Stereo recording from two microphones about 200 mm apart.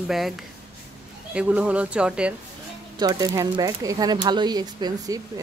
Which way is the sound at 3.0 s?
20° right (ahead or behind).